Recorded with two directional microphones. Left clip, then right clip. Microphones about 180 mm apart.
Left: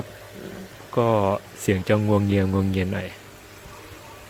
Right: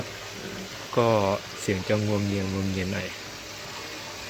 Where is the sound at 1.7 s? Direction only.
35° left (ahead or behind).